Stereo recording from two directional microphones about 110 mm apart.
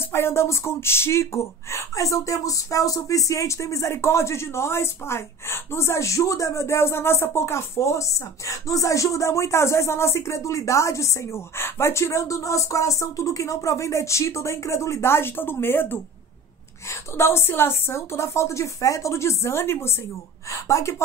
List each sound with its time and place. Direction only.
0.0 s speech: 20° left (ahead or behind)